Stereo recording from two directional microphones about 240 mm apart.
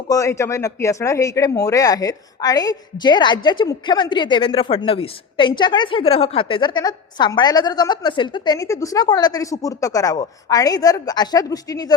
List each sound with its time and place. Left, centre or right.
0.1 s speech: centre